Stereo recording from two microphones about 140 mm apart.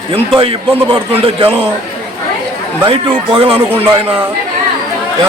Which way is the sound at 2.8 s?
40° right (ahead or behind).